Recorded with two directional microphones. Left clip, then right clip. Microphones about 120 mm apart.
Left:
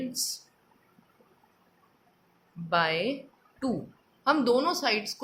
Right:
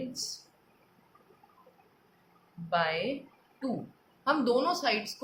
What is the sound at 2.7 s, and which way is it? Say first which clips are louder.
Speech: left 3 dB; 55° left (ahead or behind).